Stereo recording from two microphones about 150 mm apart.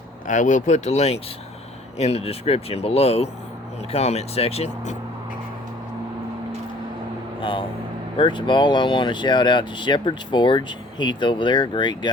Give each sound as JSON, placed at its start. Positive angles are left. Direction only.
{"t": 0.3, "sound": "speech", "side_deg": 55}
{"t": 8.2, "sound": "speech", "side_deg": 30}